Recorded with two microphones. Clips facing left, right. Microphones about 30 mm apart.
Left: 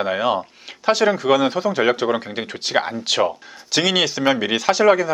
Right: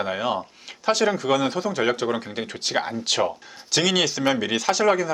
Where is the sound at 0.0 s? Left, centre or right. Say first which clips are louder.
Left 5 dB; centre.